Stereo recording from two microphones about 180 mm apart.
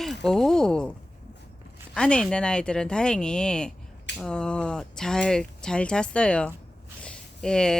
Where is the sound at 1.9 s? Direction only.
5° left (ahead or behind).